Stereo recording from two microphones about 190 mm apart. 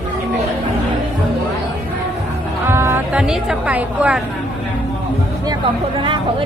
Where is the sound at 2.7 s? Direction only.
15° right (ahead or behind).